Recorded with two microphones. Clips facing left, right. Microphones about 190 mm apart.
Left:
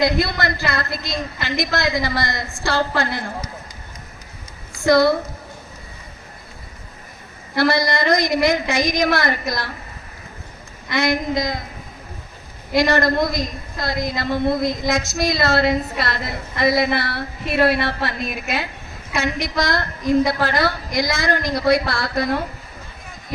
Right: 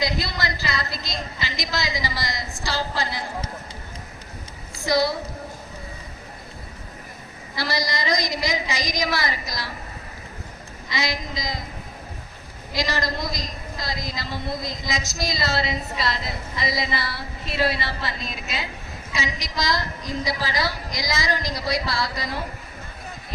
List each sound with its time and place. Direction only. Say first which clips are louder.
0.0 s a woman's voice: left 7 dB; 55° left (ahead or behind)
4.8 s a woman's voice: left 7 dB; 55° left (ahead or behind)
7.5 s a woman's voice: left 9 dB; 55° left (ahead or behind)
10.8 s a woman's voice: left 8 dB; 55° left (ahead or behind)
12.7 s a woman's voice: left 9 dB; 55° left (ahead or behind)